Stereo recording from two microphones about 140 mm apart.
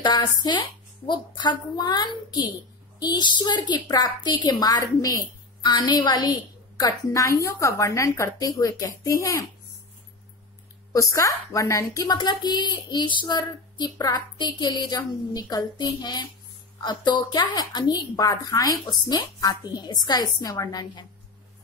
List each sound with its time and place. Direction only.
0.0 s a woman's voice: 30° left (ahead or behind)
10.9 s a woman's voice: 25° left (ahead or behind)